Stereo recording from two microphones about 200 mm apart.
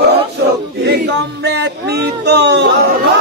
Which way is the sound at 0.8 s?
55° right (ahead or behind).